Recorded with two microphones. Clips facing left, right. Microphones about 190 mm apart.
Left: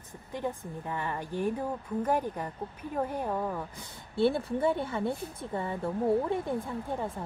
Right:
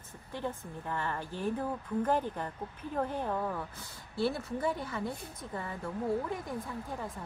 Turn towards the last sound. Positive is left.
turn(degrees=25)  # may be behind; listen again after turning